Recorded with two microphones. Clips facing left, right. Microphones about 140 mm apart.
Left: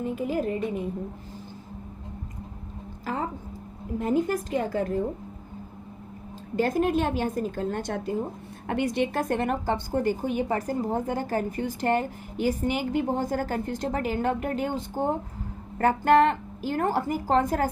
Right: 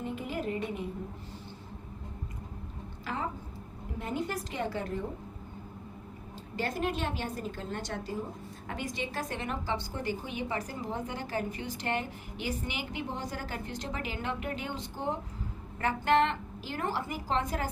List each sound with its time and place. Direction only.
0.0 s a woman's voice: 40° left (ahead or behind)
3.1 s a woman's voice: 40° left (ahead or behind)
6.6 s a woman's voice: 45° left (ahead or behind)
8.6 s a woman's voice: 65° left (ahead or behind); by 17.7 s 45° left (ahead or behind)